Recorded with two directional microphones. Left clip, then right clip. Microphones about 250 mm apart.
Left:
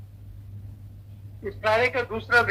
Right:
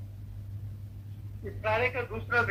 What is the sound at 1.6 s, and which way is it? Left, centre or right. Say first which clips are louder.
Speech: left 6 dB; left.